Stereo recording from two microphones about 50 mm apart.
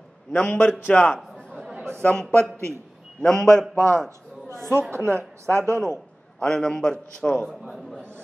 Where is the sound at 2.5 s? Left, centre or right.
Right.